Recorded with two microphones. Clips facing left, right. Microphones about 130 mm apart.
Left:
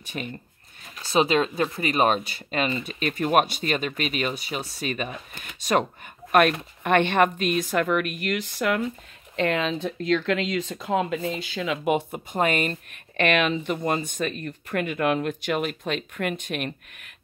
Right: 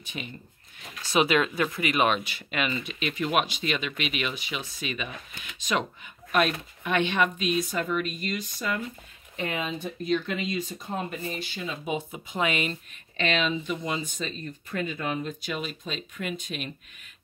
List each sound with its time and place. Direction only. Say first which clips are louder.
0.1 s speech: left 5 dB; 50° left (ahead or behind)
1.1 s speech: left 2 dB; 30° left (ahead or behind); by 8.8 s 75° left (ahead or behind)
9.4 s speech: left 7 dB; 85° left
11.6 s speech: left 8 dB; 80° left; by 12.7 s 50° left (ahead or behind)
13.2 s speech: left 4 dB; 60° left (ahead or behind)